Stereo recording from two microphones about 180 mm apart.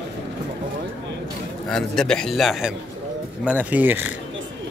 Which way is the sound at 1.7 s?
5° left (ahead or behind).